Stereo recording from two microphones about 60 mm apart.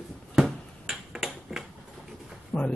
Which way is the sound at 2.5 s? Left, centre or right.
Centre.